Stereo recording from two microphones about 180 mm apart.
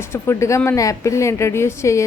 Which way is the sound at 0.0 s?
15° left (ahead or behind).